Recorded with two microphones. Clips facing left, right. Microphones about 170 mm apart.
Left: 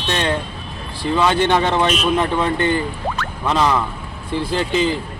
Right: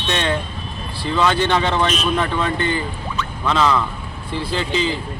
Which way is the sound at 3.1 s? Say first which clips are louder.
Even; 65° left (ahead or behind).